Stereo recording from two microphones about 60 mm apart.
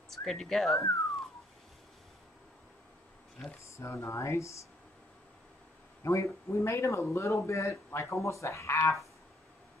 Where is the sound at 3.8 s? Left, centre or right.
Left.